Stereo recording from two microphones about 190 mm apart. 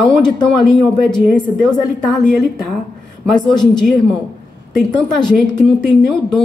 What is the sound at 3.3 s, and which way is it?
Speech, 20° left (ahead or behind).